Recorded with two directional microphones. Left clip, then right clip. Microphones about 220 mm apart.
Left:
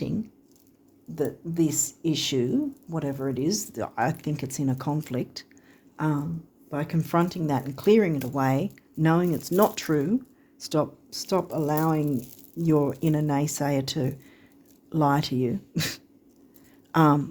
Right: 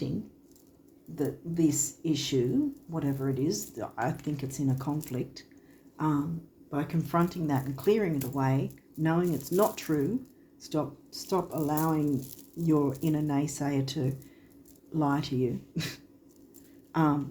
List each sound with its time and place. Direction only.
1.1 s speech: 50° left (ahead or behind)
6.7 s speech: 50° left (ahead or behind)